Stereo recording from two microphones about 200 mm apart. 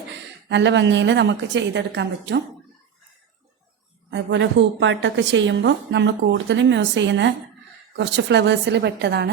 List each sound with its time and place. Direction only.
0.1 s a woman's voice: 65° right (ahead or behind)
4.1 s a woman's voice: 65° right (ahead or behind)